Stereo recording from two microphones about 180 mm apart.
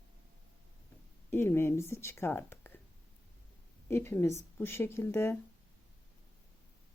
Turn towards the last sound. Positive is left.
turn(degrees=15)  # may be behind; listen again after turning